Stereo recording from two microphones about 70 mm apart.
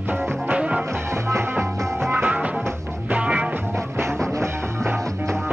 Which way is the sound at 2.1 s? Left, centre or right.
Right.